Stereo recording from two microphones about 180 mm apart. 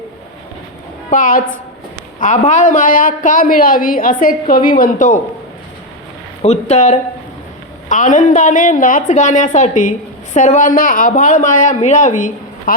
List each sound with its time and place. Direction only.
1.1 s a woman's voice: 50° left (ahead or behind)
6.4 s a woman's voice: 40° left (ahead or behind)